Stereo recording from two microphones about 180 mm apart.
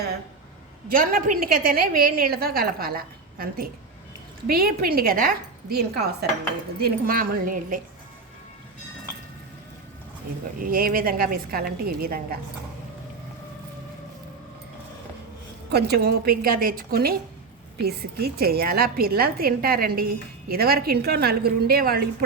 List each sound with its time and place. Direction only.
0.9 s a woman's voice: 50° right (ahead or behind)
10.7 s a woman's voice: 55° right (ahead or behind)
15.7 s a woman's voice: 60° right (ahead or behind)